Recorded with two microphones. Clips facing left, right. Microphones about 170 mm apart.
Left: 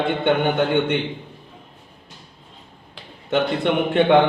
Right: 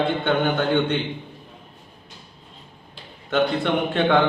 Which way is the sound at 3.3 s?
20° left (ahead or behind).